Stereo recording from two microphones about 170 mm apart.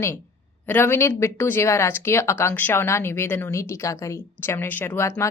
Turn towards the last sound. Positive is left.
turn(degrees=15)  # may be behind; listen again after turning